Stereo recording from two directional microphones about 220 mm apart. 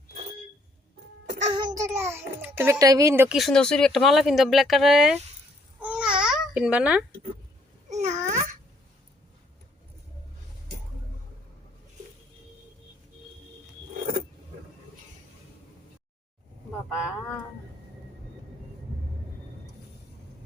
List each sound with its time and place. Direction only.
1.3 s a sound: 30° right (ahead or behind)
1.6 s a child's voice: 15° right (ahead or behind)
5.8 s babbling: 5° right (ahead or behind)
7.9 s babbling: 30° right (ahead or behind)